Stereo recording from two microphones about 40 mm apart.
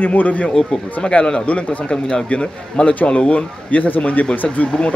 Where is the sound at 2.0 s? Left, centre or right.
Left.